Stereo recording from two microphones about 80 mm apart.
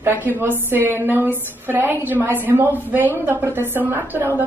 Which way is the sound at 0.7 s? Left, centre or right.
Right.